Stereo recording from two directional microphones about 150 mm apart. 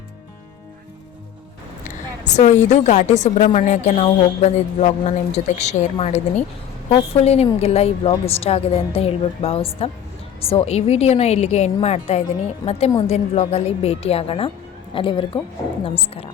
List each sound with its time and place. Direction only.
2.2 s a woman's voice: 50° left (ahead or behind)
12.6 s a woman's voice: 25° left (ahead or behind)
13.0 s a woman's voice: 45° left (ahead or behind)